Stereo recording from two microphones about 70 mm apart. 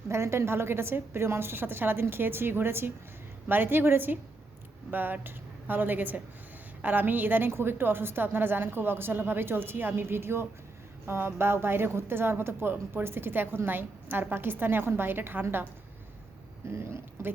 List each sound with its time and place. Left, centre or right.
0.1 s a woman's voice: right
16.6 s a woman's voice: right